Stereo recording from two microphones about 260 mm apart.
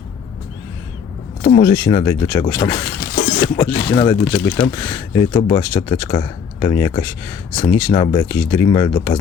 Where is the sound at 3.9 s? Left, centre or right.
Left.